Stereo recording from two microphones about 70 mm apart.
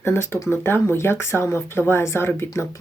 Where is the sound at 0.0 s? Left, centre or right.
Left.